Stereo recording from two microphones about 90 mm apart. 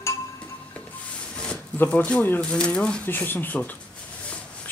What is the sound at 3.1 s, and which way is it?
Speech, 20° left (ahead or behind).